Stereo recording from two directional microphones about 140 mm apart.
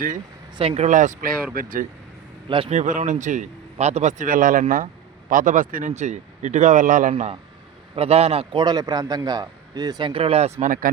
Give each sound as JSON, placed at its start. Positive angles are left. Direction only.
{"t": 0.5, "sound": "a man's voice", "side_deg": -45}
{"t": 0.9, "sound": "speech", "side_deg": -60}
{"t": 1.5, "sound": "speech", "side_deg": -85}
{"t": 2.6, "sound": "speech", "side_deg": -60}
{"t": 7.1, "sound": "a man's voice", "side_deg": -45}
{"t": 8.6, "sound": "a man's voice", "side_deg": -30}
{"t": 10.1, "sound": "a man's voice", "side_deg": -40}
{"t": 10.7, "sound": "speech", "side_deg": -90}